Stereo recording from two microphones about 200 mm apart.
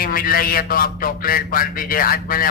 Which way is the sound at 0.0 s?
45° left (ahead or behind).